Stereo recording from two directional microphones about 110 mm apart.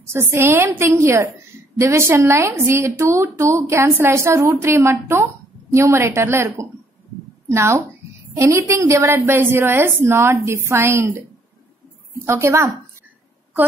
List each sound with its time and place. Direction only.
0.1 s a woman's voice: 20° right (ahead or behind)